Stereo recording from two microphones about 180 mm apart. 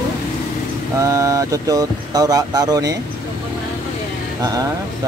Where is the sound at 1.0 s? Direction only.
15° right (ahead or behind).